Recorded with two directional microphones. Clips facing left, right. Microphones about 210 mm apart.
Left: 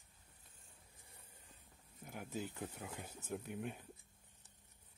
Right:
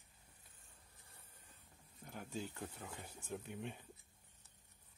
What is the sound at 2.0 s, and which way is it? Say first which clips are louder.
Speech: left 1 dB; 10° left (ahead or behind).